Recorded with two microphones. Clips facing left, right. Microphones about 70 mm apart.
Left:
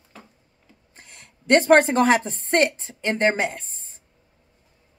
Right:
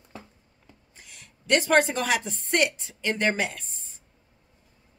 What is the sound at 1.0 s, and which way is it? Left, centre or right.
A woman's voice, left.